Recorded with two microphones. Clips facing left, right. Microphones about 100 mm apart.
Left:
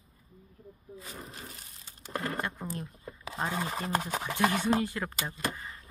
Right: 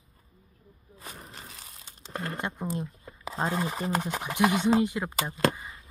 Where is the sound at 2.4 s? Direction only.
20° right (ahead or behind).